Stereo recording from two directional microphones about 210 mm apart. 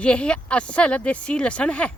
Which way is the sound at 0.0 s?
5° left (ahead or behind).